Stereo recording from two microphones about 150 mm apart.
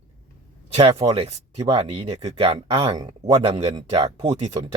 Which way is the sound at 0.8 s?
40° right (ahead or behind).